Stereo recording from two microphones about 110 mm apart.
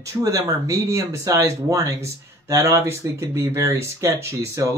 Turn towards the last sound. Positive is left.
turn(degrees=-25)  # may be behind; listen again after turning